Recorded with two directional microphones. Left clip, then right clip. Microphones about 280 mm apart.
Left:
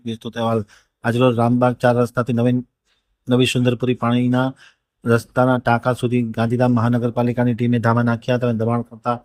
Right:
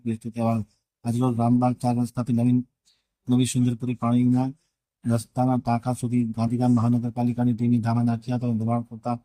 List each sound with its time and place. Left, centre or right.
0.0 s speech: centre
7.9 s speech: left
8.3 s speech: centre